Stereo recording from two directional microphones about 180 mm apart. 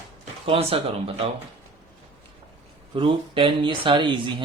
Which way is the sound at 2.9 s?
30° right (ahead or behind).